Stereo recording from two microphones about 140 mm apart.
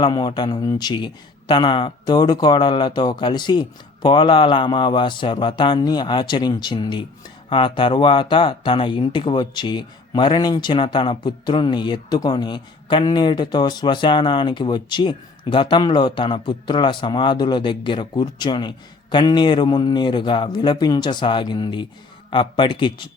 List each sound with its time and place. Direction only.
0.0 s speech: 30° left (ahead or behind)